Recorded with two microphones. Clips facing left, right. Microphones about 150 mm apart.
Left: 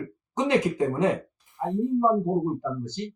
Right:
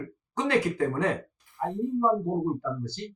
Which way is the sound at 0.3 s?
20° left (ahead or behind).